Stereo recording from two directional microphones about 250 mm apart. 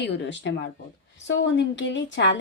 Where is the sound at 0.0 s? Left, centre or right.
Left.